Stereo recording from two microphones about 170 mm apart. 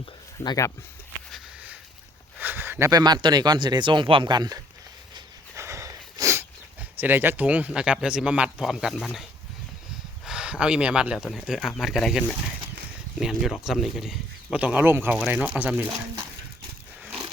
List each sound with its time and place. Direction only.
0.0 s speech: 25° left (ahead or behind)
2.4 s speech: 10° right (ahead or behind)
5.5 s a sound: 15° right (ahead or behind)
10.2 s speech: 5° right (ahead or behind)